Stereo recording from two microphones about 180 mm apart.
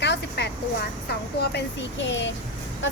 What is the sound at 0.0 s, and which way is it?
Vehicle, 70° left (ahead or behind).